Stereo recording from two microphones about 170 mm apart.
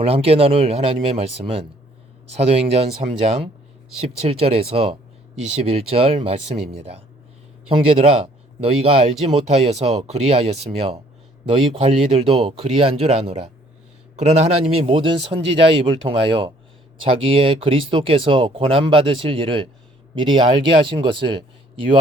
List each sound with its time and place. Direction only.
0.0 s speech: 35° right (ahead or behind)